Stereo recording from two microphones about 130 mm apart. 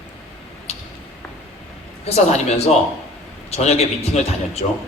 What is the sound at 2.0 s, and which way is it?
A man's voice, 55° left (ahead or behind).